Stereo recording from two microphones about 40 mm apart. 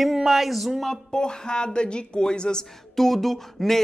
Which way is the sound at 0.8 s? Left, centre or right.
Centre.